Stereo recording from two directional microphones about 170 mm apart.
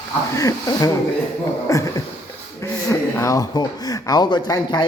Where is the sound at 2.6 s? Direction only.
15° left (ahead or behind).